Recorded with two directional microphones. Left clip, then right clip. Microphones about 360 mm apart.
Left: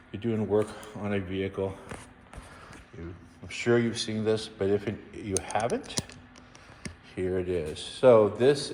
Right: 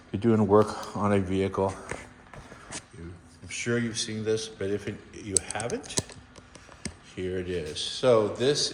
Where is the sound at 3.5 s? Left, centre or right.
Centre.